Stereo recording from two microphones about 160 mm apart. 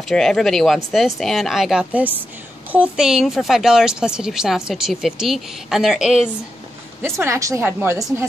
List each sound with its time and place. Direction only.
0.1 s speech: 5° left (ahead or behind)
7.0 s speech: 15° right (ahead or behind)